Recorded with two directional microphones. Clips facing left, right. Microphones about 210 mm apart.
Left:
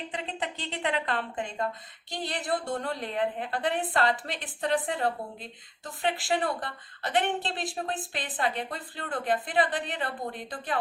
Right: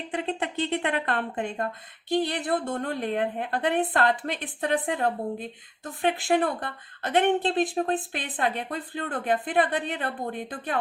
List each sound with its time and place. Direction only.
0.1 s a woman's voice: 55° right (ahead or behind)